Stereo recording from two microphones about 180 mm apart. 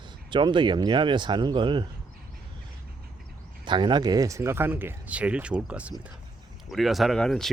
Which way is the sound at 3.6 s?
25° right (ahead or behind).